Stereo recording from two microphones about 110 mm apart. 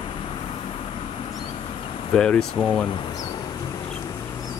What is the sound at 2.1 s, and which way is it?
Speech, 5° left (ahead or behind).